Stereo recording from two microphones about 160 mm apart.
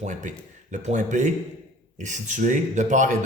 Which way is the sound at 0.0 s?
50° right (ahead or behind).